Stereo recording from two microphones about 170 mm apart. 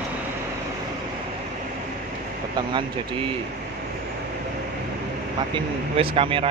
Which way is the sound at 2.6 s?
30° right (ahead or behind).